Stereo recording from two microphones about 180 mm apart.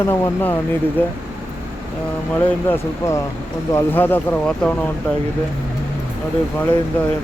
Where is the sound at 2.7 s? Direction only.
15° left (ahead or behind).